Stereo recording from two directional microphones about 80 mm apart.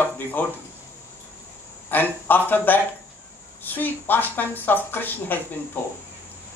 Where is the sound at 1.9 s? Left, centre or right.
Left.